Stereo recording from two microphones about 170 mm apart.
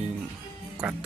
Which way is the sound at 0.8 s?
5° right (ahead or behind).